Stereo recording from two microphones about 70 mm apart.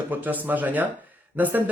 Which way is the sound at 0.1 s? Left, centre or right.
Right.